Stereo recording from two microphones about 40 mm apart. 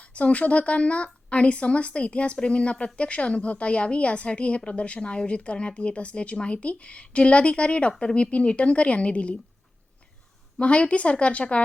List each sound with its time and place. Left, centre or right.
0.0 s speech: left
10.6 s speech: left